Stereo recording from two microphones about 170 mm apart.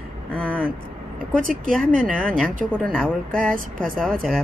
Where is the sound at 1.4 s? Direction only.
50° right (ahead or behind).